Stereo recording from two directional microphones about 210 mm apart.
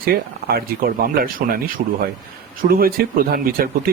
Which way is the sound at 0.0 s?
45° right (ahead or behind).